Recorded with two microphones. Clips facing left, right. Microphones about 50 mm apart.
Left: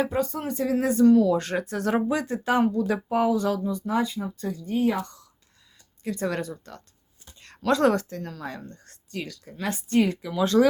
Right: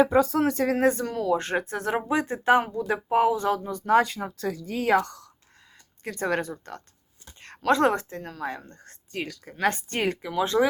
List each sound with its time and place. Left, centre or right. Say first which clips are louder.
0.6 s a woman's voice: left 2 dB; right
6.0 s a woman's voice: right 1 dB; right
10.2 s speech: right 1 dB; right